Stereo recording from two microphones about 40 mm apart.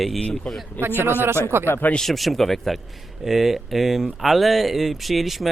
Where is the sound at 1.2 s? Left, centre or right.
Right.